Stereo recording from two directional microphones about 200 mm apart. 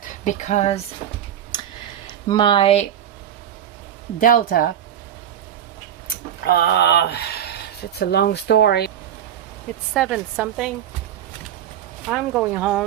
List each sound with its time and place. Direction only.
0.3 s speech: 35° left (ahead or behind)
2.0 s speech: 25° left (ahead or behind)
4.2 s speech: 45° left (ahead or behind)
6.4 s a sound: 50° left (ahead or behind)
9.9 s a woman's voice: centre (ahead or behind)
12.0 s a woman's voice: 5° right (ahead or behind)